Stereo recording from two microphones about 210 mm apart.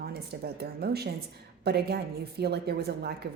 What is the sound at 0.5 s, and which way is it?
Speech, 50° right (ahead or behind).